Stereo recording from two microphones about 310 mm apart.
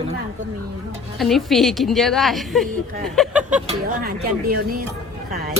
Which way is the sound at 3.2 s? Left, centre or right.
Centre.